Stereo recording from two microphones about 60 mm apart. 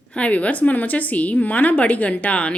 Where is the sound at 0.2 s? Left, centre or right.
Left.